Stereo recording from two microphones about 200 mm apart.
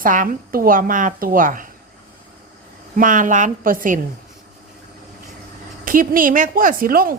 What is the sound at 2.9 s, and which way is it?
A woman's voice, 40° right (ahead or behind).